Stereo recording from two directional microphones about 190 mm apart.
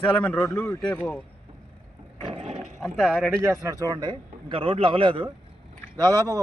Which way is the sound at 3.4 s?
15° right (ahead or behind).